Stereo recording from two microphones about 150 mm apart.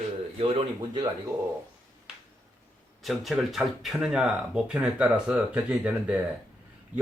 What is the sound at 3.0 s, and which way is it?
Speech, centre (ahead or behind).